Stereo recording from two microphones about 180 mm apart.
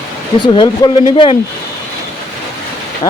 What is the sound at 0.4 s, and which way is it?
Speech, 25° left (ahead or behind).